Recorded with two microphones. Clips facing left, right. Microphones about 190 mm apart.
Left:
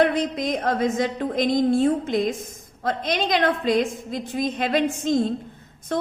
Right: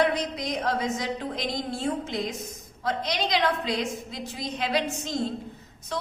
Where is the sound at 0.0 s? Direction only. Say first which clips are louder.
Left 5 dB; 55° left (ahead or behind).